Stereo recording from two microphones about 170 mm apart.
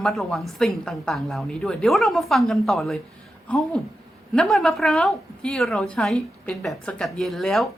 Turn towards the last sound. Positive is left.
turn(degrees=0)  # may be behind; listen again after turning